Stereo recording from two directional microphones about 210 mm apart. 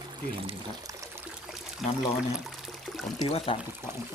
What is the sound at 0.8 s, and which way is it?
Pour, 15° right (ahead or behind).